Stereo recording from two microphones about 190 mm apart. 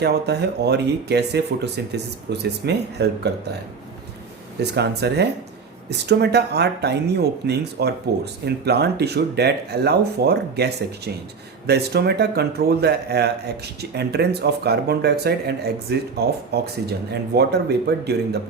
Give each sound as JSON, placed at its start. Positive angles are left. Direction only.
{"t": 0.0, "sound": "speech", "side_deg": -60}
{"t": 4.6, "sound": "speech", "side_deg": -60}